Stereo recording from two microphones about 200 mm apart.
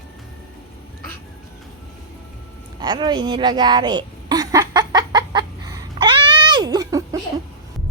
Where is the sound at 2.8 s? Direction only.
20° right (ahead or behind).